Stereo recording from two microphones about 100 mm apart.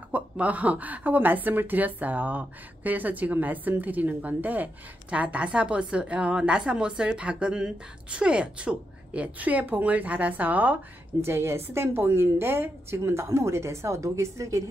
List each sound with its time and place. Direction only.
0.1 s a woman's voice: 15° right (ahead or behind); by 14.6 s 30° right (ahead or behind)